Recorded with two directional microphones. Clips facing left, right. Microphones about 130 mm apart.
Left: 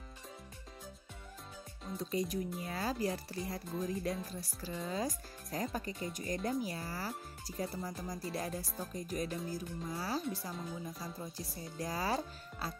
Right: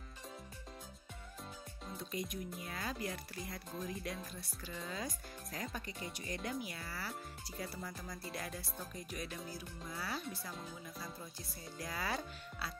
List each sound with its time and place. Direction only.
2.0 s speech: 35° left (ahead or behind)